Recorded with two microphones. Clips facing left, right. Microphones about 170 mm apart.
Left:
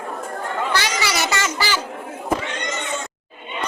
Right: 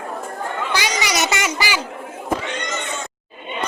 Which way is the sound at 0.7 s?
15° right (ahead or behind).